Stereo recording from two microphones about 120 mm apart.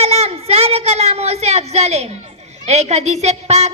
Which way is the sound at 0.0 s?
60° right (ahead or behind).